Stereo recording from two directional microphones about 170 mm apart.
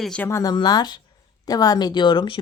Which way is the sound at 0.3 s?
15° left (ahead or behind).